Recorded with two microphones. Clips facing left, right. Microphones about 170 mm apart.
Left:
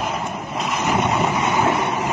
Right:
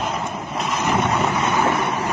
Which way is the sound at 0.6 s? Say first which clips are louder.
Even; 15° left (ahead or behind).